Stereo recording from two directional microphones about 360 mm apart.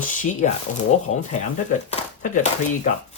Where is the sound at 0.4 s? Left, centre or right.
Left.